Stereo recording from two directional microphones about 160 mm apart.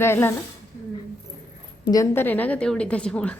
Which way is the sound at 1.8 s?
20° left (ahead or behind).